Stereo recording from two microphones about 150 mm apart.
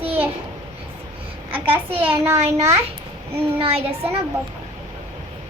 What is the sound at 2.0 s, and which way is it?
Speech, 15° right (ahead or behind).